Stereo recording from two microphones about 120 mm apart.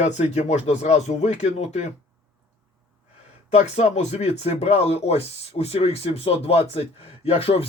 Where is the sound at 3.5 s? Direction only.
70° left (ahead or behind).